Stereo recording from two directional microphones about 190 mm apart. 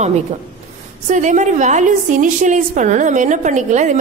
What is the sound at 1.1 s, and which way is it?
A woman's voice, 40° right (ahead or behind).